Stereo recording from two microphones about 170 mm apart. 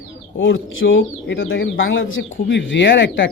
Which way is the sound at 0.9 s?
90° left.